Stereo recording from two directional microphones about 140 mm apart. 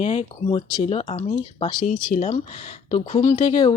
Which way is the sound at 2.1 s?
60° left (ahead or behind).